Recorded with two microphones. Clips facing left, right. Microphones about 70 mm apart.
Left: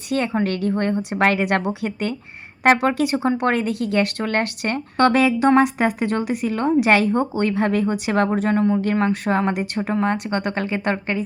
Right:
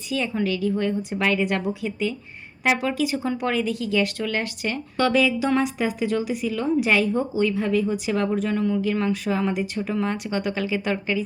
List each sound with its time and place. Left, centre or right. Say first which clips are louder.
0.1 s speech: left 3 dB; left
8.3 s speech: left 4 dB; left
9.9 s speech: left 5 dB; left